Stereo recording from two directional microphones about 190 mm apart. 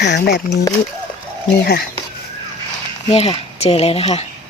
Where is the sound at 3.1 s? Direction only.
30° left (ahead or behind).